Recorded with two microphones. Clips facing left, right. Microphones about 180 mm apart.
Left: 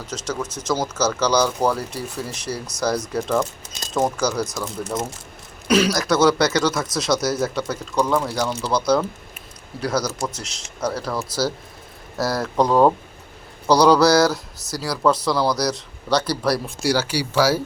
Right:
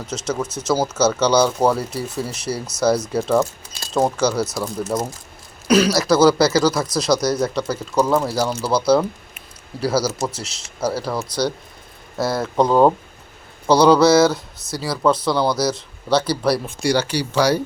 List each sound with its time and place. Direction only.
0.7 s speech: 5° right (ahead or behind)
1.3 s speech: 25° right (ahead or behind)
1.6 s speech: 10° right (ahead or behind)